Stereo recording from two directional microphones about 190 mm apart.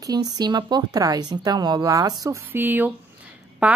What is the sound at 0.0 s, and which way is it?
A woman's voice, 20° right (ahead or behind).